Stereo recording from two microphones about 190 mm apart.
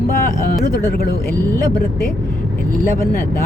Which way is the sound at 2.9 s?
50° left (ahead or behind).